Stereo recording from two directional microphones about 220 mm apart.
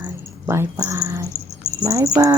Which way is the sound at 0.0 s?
10° right (ahead or behind).